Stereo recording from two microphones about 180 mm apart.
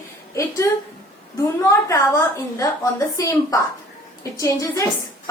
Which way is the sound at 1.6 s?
15° left (ahead or behind).